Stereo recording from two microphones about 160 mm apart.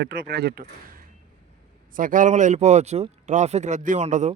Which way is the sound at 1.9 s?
60° right (ahead or behind).